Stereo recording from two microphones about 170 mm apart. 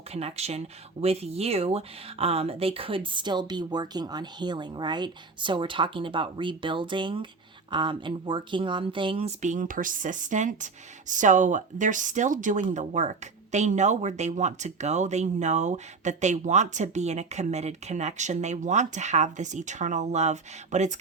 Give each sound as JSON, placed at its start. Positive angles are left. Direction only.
{"t": 0.1, "sound": "speech", "side_deg": -35}
{"t": 9.4, "sound": "speech", "side_deg": -45}